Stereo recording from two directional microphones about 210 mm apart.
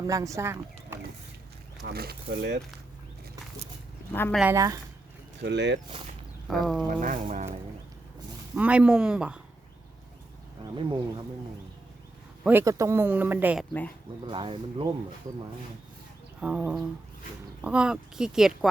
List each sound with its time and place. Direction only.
0.1 s speech: 15° right (ahead or behind)
1.9 s speech: 50° right (ahead or behind)
4.1 s speech: 10° left (ahead or behind)
4.4 s speech: 10° right (ahead or behind)
5.4 s speech: 55° right (ahead or behind)
5.9 s a sound: 25° right (ahead or behind)
6.5 s speech: centre (ahead or behind)
7.0 s speech: 40° right (ahead or behind)
8.5 s speech: 5° right (ahead or behind)
10.8 s speech: 20° right (ahead or behind)
12.5 s speech: 10° right (ahead or behind)
14.3 s speech: 25° right (ahead or behind)
16.4 s speech: 5° right (ahead or behind)